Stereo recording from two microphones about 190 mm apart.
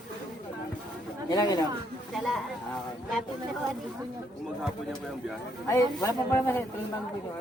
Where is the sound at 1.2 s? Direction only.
20° left (ahead or behind).